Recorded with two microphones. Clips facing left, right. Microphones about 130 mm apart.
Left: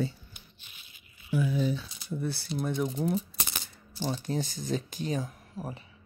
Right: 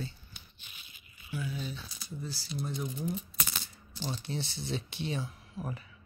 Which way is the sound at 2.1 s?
60° left (ahead or behind).